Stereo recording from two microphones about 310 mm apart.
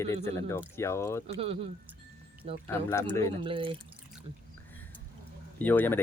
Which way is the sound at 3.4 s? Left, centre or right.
Centre.